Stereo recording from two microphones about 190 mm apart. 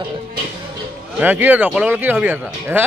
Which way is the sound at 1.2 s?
10° right (ahead or behind).